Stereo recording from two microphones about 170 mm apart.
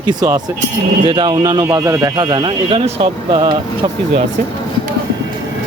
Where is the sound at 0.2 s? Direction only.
25° right (ahead or behind).